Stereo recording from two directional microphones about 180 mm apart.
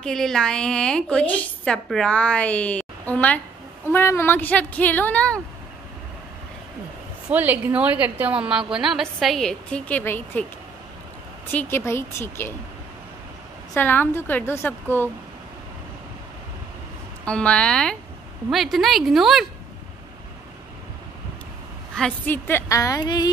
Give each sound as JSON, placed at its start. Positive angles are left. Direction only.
{"t": 0.0, "sound": "a woman's voice", "side_deg": 0}
{"t": 7.2, "sound": "a woman's voice", "side_deg": -10}
{"t": 11.5, "sound": "speech", "side_deg": 15}
{"t": 13.7, "sound": "speech", "side_deg": 10}
{"t": 17.2, "sound": "a woman's voice", "side_deg": 5}
{"t": 21.9, "sound": "speech", "side_deg": 5}